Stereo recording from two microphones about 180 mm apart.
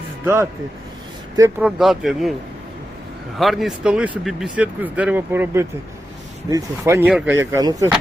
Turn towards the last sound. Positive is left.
turn(degrees=-20)  # may be behind; listen again after turning